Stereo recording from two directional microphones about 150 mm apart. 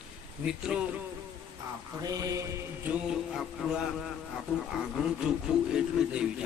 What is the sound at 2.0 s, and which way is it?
Mantra, 25° right (ahead or behind).